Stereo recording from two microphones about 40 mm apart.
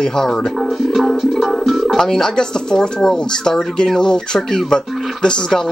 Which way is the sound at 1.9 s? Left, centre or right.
Centre.